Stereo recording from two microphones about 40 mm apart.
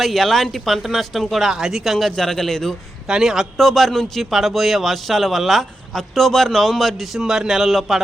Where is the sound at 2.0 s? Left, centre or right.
Centre.